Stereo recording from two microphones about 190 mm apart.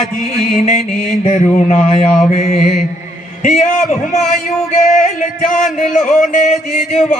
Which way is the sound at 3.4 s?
35° left (ahead or behind).